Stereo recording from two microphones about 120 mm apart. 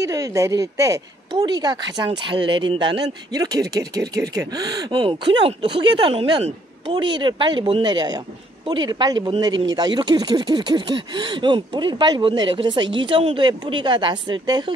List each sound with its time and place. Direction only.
0.0 s speech: 25° right (ahead or behind)